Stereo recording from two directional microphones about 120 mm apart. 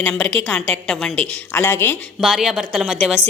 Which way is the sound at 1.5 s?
20° left (ahead or behind).